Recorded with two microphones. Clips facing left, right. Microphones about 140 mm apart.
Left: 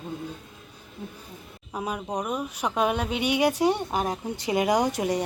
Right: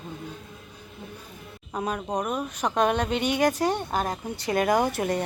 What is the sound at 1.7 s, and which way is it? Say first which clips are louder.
Speech: right 2 dB; 10° left (ahead or behind).